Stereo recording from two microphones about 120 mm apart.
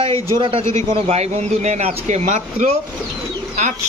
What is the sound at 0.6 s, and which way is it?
A man's voice, 65° right (ahead or behind).